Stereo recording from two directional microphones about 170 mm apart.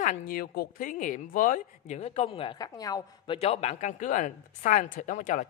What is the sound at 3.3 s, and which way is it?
Speech, 40° left (ahead or behind).